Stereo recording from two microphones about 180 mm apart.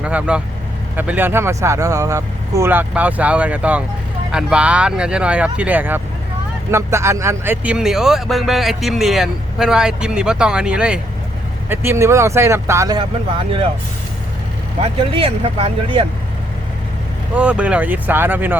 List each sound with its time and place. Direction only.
0.0 s speech: 5° right (ahead or behind)
14.8 s speech: 30° right (ahead or behind)
17.3 s speech: 5° right (ahead or behind)